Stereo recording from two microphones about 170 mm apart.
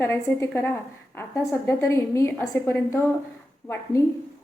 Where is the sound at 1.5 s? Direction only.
15° left (ahead or behind).